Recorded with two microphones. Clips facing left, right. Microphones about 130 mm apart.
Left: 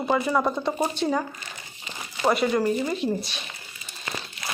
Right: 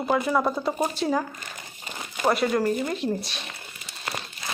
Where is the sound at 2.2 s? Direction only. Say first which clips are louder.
Left 1 dB; centre (ahead or behind).